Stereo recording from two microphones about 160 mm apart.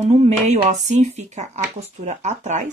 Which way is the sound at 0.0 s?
45° right (ahead or behind).